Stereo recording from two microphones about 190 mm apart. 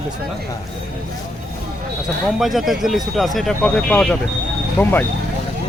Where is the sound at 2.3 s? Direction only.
Centre (ahead or behind).